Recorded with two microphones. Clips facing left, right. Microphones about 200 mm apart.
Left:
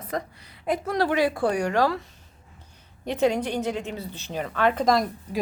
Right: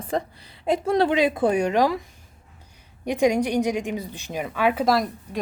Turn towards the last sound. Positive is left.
turn(degrees=-5)  # may be behind; listen again after turning